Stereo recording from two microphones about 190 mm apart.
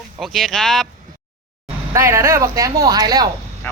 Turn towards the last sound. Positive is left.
turn(degrees=-20)  # may be behind; listen again after turning